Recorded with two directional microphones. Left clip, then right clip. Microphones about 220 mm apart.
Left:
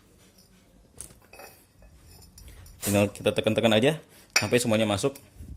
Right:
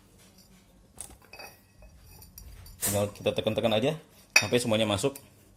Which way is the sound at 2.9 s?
20° left (ahead or behind).